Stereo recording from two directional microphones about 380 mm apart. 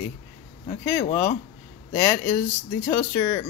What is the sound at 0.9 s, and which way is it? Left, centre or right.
Speech, left.